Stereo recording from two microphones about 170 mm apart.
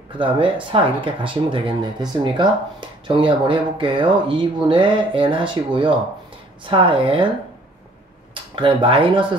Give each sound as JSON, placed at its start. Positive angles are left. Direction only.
{"t": 0.7, "sound": "speech", "side_deg": -30}
{"t": 8.5, "sound": "speech", "side_deg": -30}